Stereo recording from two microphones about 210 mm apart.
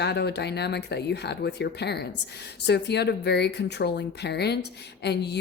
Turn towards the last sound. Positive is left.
turn(degrees=50)  # may be behind; listen again after turning